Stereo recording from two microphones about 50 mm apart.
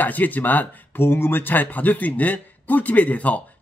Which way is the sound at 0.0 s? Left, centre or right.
Left.